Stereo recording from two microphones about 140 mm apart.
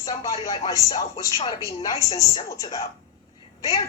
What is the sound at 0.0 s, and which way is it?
A woman's voice, 30° left (ahead or behind).